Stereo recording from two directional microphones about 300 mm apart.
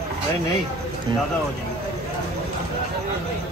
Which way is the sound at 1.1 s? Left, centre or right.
Centre.